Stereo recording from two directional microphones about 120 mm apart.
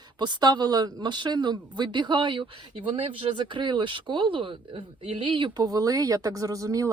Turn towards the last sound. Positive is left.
turn(degrees=-30)  # may be behind; listen again after turning